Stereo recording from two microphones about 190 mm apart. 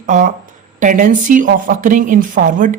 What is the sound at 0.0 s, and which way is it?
A woman's voice, 45° right (ahead or behind).